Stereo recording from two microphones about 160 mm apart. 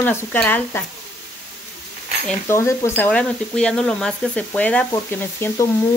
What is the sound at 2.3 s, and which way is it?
Speech, 15° left (ahead or behind).